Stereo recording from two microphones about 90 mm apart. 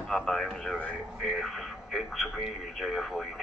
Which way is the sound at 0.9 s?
Centre (ahead or behind).